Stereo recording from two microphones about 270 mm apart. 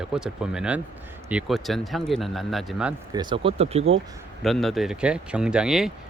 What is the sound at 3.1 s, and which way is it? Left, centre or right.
Speech, centre.